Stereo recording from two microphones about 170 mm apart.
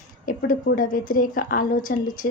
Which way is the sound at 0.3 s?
55° left (ahead or behind).